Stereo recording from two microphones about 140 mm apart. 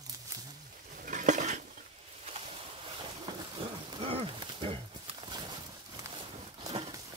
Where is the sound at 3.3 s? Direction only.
40° right (ahead or behind).